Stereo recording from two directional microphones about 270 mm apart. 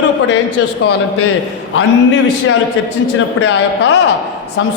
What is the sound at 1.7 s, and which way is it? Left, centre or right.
Speech, left.